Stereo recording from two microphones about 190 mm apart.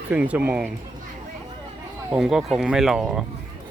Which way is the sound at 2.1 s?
5° right (ahead or behind).